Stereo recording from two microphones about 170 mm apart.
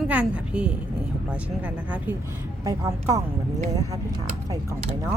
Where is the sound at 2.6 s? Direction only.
20° right (ahead or behind).